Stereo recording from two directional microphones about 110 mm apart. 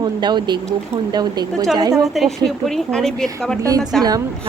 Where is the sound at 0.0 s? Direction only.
40° right (ahead or behind).